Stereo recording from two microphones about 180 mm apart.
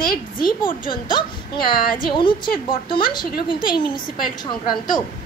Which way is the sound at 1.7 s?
55° left (ahead or behind).